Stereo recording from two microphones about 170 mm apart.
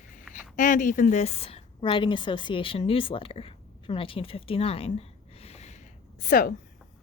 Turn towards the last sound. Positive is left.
turn(degrees=55)  # may be behind; listen again after turning